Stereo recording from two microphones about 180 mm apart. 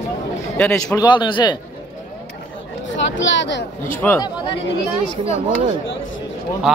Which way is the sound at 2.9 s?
90° left.